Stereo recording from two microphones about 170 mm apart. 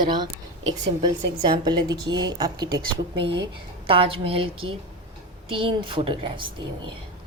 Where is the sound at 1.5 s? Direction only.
25° right (ahead or behind).